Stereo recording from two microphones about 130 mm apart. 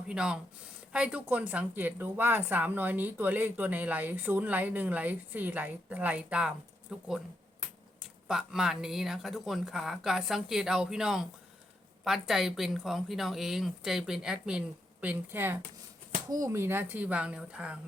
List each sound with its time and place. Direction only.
0.1 s a woman's voice: 5° right (ahead or behind)
15.0 s a woman's voice: 15° right (ahead or behind)